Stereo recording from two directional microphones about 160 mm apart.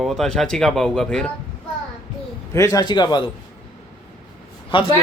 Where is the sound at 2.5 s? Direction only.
20° left (ahead or behind).